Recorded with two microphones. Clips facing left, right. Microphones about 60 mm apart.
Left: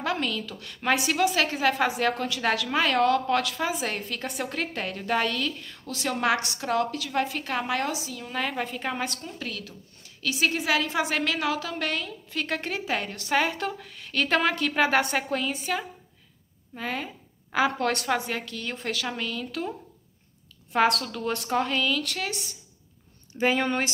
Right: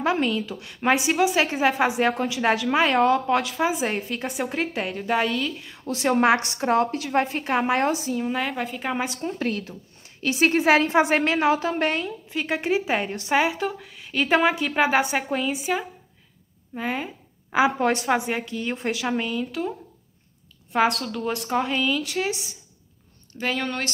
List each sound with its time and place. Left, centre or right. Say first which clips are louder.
0.0 s a woman's voice: right 5 dB; right
8.3 s a woman's voice: right 3 dB; centre
8.9 s a woman's voice: right 4 dB; centre
9.2 s a woman's voice: right 9 dB; right
12.3 s a woman's voice: right 6 dB; centre
20.7 s a woman's voice: right 1 dB; centre
23.3 s speech: left 3 dB; centre